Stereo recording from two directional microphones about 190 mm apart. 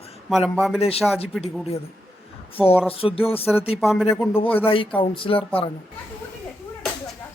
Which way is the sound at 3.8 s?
Centre (ahead or behind).